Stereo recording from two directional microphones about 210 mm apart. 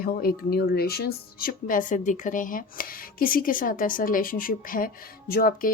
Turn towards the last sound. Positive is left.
turn(degrees=45)  # may be behind; listen again after turning